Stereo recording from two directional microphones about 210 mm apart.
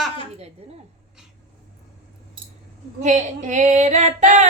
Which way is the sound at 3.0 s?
35° right (ahead or behind).